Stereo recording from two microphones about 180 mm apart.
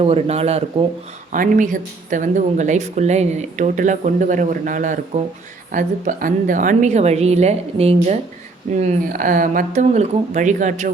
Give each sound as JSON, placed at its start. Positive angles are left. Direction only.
{"t": 0.0, "sound": "a woman's voice", "side_deg": -35}
{"t": 1.3, "sound": "a woman's voice", "side_deg": -45}